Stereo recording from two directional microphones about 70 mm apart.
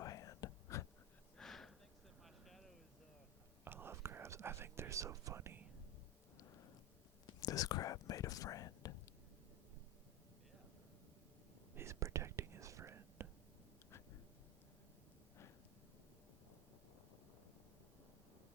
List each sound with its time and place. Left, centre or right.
0.0 s whispering: left
1.4 s gasp: centre
2.2 s a sound: centre
3.6 s whispering: right
5.4 s whispering: right
7.3 s whispering: left
11.7 s whispering: right